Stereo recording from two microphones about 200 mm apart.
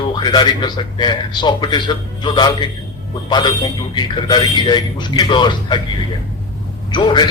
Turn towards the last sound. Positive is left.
turn(degrees=20)  # may be behind; listen again after turning